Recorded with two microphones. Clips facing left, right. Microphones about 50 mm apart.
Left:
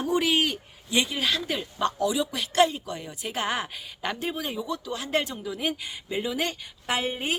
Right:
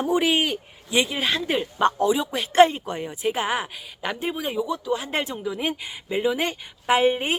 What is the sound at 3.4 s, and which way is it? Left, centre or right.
Speech, centre.